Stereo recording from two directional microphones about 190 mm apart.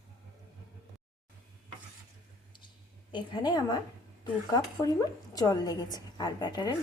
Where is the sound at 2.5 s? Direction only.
25° left (ahead or behind).